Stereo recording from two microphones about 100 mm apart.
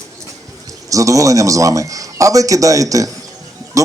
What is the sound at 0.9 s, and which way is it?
A man's voice, 35° right (ahead or behind).